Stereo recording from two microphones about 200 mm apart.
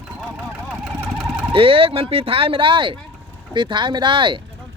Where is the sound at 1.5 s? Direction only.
25° right (ahead or behind).